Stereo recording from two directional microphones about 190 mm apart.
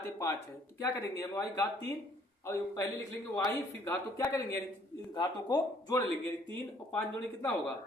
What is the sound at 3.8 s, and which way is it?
Speech, 15° left (ahead or behind).